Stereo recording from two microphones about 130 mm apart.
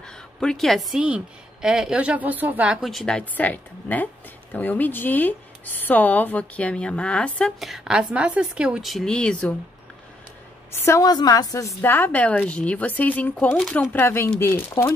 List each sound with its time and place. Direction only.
0.4 s a woman's voice: 5° left (ahead or behind)
7.6 s a woman's voice: 5° right (ahead or behind)
10.7 s a woman's voice: 20° left (ahead or behind)